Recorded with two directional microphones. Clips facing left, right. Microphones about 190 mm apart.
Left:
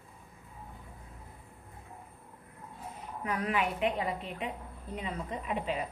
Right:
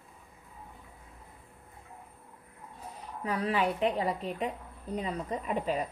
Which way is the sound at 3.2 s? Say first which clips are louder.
Right 2 dB; 30° right (ahead or behind).